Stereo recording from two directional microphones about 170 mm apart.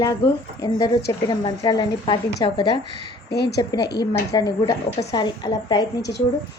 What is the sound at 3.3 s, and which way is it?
Speech, 75° left (ahead or behind).